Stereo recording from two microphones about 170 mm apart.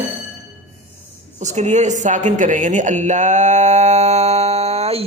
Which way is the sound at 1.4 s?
45° right (ahead or behind).